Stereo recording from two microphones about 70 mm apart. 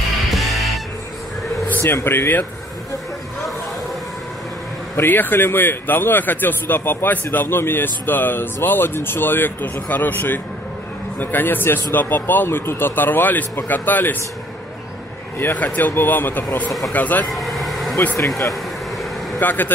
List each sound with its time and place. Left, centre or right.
0.3 s music: centre
1.7 s a sound: left
2.0 s speech: left
4.9 s a man's voice: left
15.3 s a man's voice: left
17.3 s vehicle: centre
19.4 s a man's voice: left